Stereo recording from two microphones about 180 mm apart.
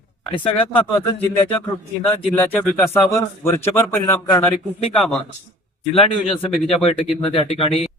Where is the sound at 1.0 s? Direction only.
30° left (ahead or behind).